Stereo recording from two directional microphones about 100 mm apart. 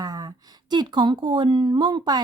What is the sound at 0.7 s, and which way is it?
A woman's voice, 50° right (ahead or behind).